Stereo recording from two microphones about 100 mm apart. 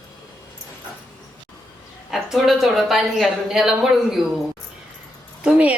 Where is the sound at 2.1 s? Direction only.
5° right (ahead or behind).